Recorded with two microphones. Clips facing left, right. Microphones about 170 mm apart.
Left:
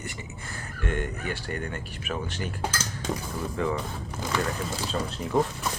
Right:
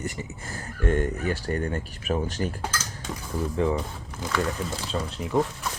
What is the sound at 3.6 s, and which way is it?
Speech, 30° right (ahead or behind).